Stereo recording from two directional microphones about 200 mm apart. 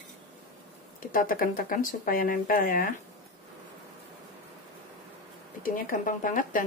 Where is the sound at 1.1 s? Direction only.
45° left (ahead or behind).